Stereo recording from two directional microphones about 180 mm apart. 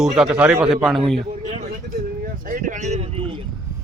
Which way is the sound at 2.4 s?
45° right (ahead or behind).